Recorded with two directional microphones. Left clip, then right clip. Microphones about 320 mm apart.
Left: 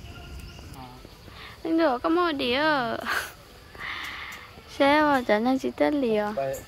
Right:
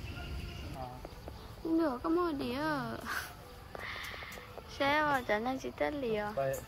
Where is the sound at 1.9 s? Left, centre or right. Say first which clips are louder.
Left 10 dB; centre.